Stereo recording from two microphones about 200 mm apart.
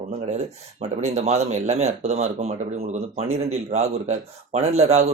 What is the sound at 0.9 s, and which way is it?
Speech, 35° right (ahead or behind).